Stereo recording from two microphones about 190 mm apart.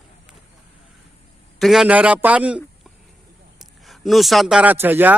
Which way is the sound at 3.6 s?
Centre (ahead or behind).